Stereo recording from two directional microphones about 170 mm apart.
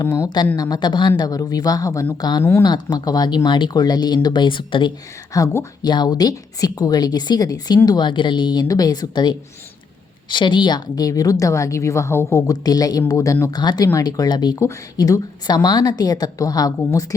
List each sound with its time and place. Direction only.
0.0 s a woman's voice: 20° left (ahead or behind)
2.6 s a woman's voice: 25° left (ahead or behind)